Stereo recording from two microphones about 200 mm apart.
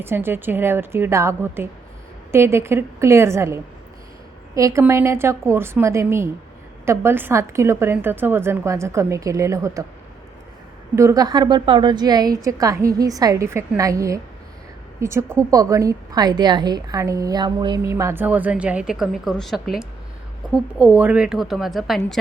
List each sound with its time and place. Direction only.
0.0 s a woman's voice: 10° right (ahead or behind)
10.9 s a woman's voice: 15° right (ahead or behind); by 22.2 s centre (ahead or behind)